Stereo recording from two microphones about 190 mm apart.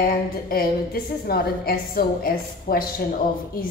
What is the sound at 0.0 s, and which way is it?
A woman's voice, 55° left (ahead or behind).